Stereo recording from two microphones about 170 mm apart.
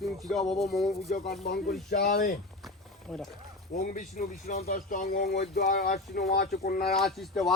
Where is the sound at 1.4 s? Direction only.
65° left (ahead or behind).